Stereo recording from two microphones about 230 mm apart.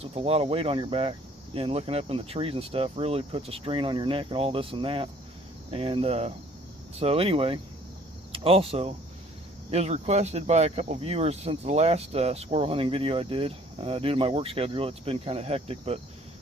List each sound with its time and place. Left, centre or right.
0.0 s speech: right